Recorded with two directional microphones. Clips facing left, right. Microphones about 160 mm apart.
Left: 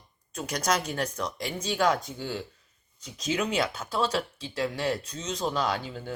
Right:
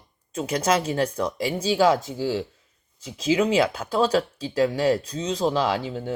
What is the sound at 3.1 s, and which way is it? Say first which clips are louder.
Speech: right 8 dB; 30° right (ahead or behind).